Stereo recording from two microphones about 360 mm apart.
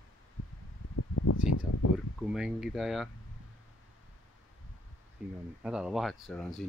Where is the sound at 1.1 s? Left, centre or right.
Left.